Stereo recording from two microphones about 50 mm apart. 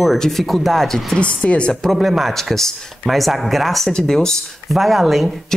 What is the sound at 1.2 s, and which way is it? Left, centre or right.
Speech, left.